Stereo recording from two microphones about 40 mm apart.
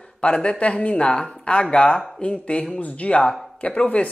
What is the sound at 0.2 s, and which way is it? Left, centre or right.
Speech, left.